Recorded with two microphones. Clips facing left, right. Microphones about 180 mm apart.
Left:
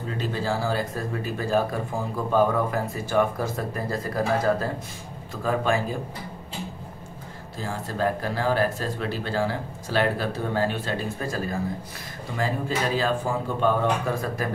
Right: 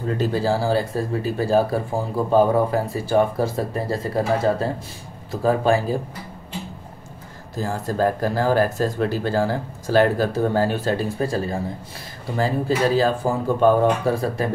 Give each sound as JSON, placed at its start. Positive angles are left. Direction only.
{"t": 0.2, "sound": "speech", "side_deg": -35}
{"t": 7.5, "sound": "speech", "side_deg": -40}